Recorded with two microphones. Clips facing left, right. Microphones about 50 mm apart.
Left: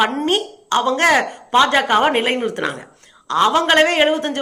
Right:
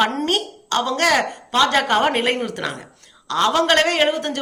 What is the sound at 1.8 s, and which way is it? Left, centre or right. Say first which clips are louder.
A woman's voice: left 3 dB; centre.